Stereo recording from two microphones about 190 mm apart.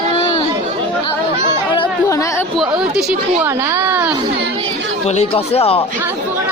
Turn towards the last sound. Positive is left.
turn(degrees=30)  # may be behind; listen again after turning